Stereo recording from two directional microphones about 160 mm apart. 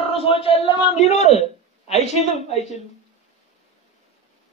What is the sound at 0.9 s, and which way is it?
A man's voice, 45° left (ahead or behind).